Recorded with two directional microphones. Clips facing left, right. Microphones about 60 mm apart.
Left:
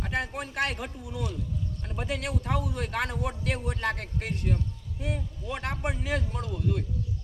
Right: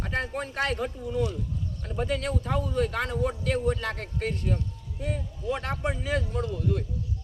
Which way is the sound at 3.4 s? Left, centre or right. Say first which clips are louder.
Right 3 dB; left.